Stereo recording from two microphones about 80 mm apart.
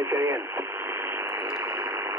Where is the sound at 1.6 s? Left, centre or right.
Right.